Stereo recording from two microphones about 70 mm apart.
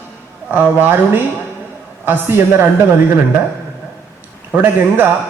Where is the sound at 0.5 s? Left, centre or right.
Right.